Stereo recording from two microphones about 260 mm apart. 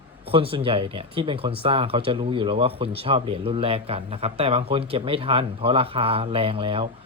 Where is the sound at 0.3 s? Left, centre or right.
Right.